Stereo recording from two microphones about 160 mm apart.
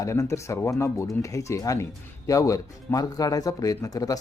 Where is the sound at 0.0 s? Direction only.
20° left (ahead or behind).